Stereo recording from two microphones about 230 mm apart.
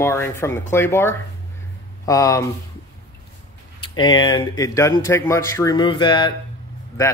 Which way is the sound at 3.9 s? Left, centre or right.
Centre.